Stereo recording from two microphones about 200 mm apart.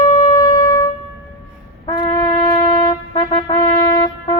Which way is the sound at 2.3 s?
30° left (ahead or behind).